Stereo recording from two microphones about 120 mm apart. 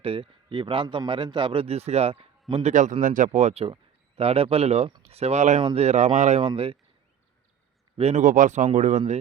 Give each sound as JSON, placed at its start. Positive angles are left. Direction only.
{"t": 0.0, "sound": "speech", "side_deg": -50}
{"t": 3.1, "sound": "speech", "side_deg": -80}
{"t": 7.9, "sound": "speech", "side_deg": -70}